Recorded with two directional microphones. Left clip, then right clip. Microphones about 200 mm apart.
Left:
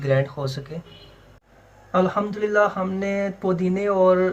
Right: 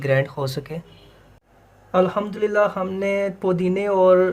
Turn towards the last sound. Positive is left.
turn(degrees=-45)  # may be behind; listen again after turning